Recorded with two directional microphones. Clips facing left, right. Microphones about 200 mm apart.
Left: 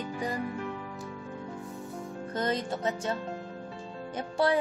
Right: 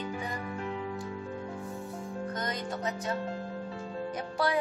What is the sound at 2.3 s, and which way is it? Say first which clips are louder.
Music: left 8 dB; 30° left (ahead or behind).